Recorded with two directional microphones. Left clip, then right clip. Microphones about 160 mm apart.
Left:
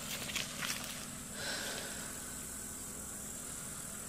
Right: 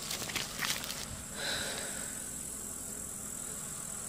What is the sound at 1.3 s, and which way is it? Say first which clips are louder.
Snort: right 4 dB; 35° right (ahead or behind).